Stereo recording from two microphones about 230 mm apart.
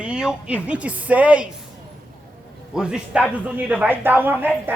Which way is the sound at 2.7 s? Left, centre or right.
Centre.